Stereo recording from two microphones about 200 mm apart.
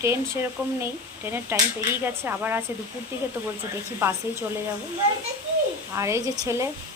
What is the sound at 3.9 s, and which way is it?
Speech, 10° right (ahead or behind).